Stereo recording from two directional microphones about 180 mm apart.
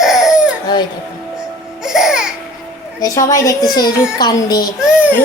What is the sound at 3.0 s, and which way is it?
A child's voice, 20° left (ahead or behind).